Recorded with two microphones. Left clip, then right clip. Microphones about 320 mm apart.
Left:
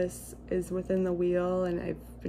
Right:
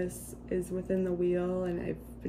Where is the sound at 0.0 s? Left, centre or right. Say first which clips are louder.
Left 4 dB; centre.